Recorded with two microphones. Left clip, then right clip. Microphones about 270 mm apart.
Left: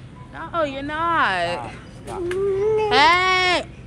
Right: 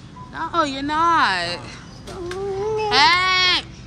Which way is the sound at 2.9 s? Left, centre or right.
Centre.